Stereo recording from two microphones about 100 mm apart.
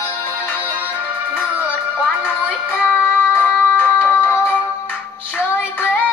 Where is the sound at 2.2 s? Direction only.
20° left (ahead or behind).